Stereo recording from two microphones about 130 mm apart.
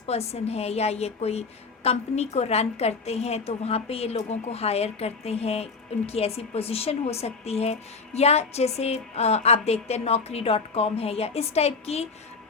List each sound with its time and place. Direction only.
0.0 s a woman's voice: 55° left (ahead or behind)